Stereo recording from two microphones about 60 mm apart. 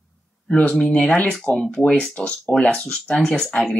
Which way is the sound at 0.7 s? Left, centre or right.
Centre.